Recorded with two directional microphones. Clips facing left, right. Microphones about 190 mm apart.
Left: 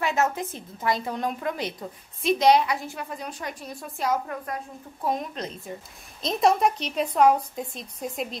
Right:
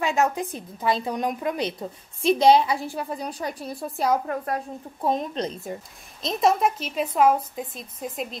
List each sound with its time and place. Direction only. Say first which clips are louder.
0.0 s a woman's voice: right 2 dB; 15° right (ahead or behind)
2.2 s a woman's voice: right 2 dB; 30° right (ahead or behind)
6.2 s a woman's voice: even; centre (ahead or behind)